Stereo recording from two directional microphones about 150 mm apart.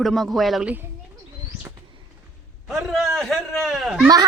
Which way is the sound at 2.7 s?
Centre (ahead or behind).